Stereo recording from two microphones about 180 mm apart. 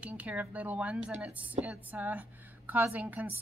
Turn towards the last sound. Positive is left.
turn(degrees=-10)  # may be behind; listen again after turning